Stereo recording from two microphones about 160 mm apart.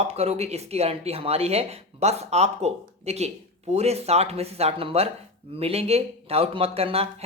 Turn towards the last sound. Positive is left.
turn(degrees=-40)  # may be behind; listen again after turning